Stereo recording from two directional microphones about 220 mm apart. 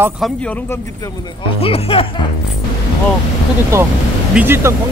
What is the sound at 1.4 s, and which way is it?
Speech, 25° left (ahead or behind).